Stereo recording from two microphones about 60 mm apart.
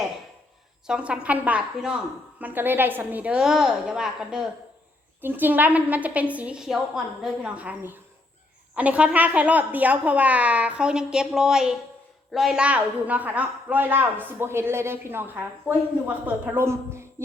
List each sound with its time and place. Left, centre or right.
0.9 s a woman's voice: centre
3.3 s speech: centre
5.2 s a woman's voice: right
6.6 s speech: centre
7.4 s a woman's voice: right; by 12.5 s centre
12.5 s a woman's voice: right